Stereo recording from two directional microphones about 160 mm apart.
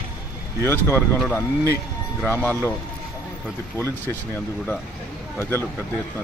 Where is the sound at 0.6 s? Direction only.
15° left (ahead or behind).